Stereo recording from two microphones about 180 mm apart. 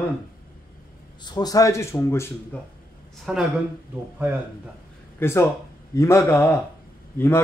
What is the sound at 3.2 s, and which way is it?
Speech, centre (ahead or behind).